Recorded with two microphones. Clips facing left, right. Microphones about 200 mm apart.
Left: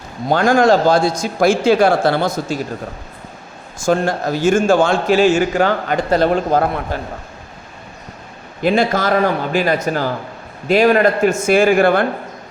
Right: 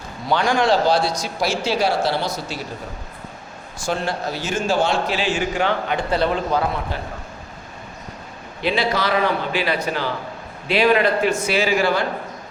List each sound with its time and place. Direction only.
0.3 s a man's voice: 45° left (ahead or behind)
3.8 s a man's voice: 45° left (ahead or behind)
8.6 s a man's voice: 45° left (ahead or behind)